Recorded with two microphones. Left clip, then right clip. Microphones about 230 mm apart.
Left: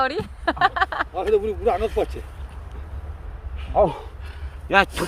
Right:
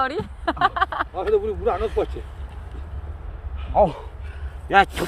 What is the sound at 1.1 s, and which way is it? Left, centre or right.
Speech, left.